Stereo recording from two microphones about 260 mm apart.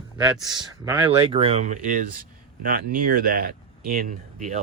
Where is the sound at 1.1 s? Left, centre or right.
Right.